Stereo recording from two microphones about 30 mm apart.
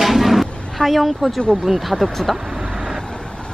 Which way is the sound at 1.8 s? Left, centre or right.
Centre.